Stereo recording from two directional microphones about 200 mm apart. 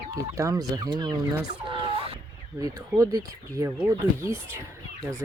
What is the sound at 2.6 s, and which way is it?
Speech, 15° right (ahead or behind).